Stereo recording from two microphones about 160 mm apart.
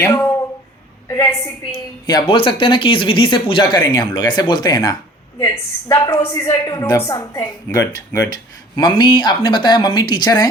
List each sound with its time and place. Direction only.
0.0 s a woman's voice: 15° left (ahead or behind)
2.0 s a woman's voice: 30° left (ahead or behind)